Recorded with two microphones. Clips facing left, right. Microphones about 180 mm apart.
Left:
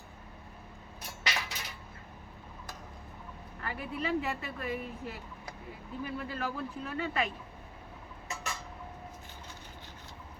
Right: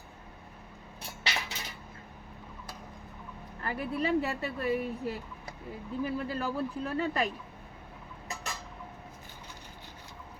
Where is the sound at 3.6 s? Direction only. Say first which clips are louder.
Right 4 dB; 35° right (ahead or behind).